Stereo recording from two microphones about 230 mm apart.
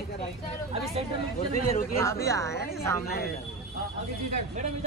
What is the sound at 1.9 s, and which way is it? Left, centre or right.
Speech, centre.